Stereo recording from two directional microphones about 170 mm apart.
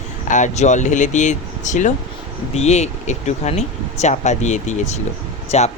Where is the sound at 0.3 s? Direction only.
45° left (ahead or behind).